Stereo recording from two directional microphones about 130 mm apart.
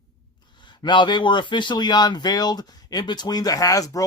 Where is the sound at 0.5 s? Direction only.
35° left (ahead or behind).